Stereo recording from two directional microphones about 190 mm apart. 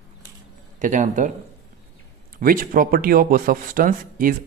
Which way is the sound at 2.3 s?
45° right (ahead or behind).